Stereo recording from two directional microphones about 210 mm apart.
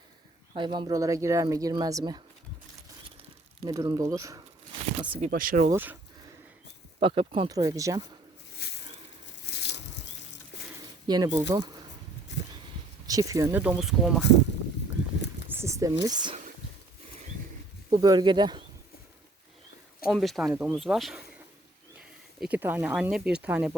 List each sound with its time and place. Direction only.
0.5 s speech: 20° right (ahead or behind)
3.6 s speech: 15° right (ahead or behind)
5.3 s speech: 40° right (ahead or behind)
5.7 s speech: 10° right (ahead or behind)
7.0 s speech: 25° right (ahead or behind)
8.6 s a sound: 50° left (ahead or behind)
11.0 s speech: 20° right (ahead or behind)
12.3 s a sound: 55° left (ahead or behind)
13.1 s speech: 15° right (ahead or behind)
15.5 s a sound: 15° right (ahead or behind)
16.0 s speech: 20° right (ahead or behind)
18.0 s speech: 20° right (ahead or behind)
20.1 s speech: centre (ahead or behind)